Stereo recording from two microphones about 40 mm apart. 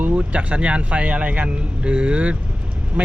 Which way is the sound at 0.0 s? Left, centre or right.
Right.